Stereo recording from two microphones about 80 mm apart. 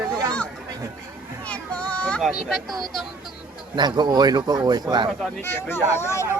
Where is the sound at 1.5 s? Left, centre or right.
Centre.